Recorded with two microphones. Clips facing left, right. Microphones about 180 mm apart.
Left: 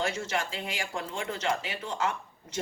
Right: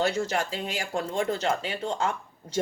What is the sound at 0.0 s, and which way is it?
Speech, 35° right (ahead or behind).